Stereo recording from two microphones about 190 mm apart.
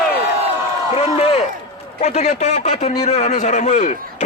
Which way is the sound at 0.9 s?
30° left (ahead or behind).